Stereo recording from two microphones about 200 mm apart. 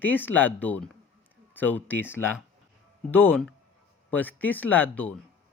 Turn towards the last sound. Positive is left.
turn(degrees=5)  # may be behind; listen again after turning